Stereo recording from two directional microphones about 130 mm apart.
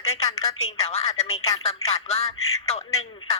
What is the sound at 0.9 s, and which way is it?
Speech, 55° left (ahead or behind).